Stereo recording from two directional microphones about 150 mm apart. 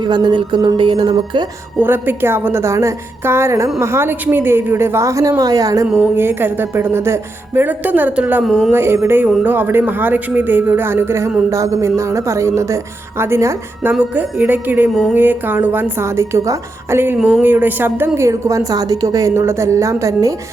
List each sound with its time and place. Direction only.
0.0 s speech: 30° right (ahead or behind)
1.8 s a woman's voice: 15° right (ahead or behind)
8.7 s a woman's voice: 15° right (ahead or behind)